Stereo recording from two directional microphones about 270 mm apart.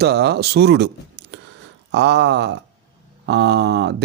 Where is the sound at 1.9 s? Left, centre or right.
Right.